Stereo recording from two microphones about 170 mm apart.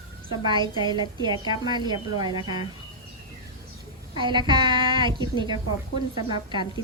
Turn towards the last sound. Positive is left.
turn(degrees=-25)  # may be behind; listen again after turning